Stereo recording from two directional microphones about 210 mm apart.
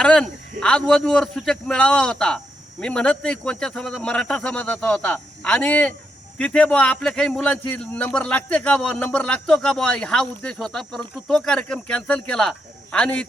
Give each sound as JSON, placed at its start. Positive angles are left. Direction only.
{"t": 0.0, "sound": "a man's voice", "side_deg": 5}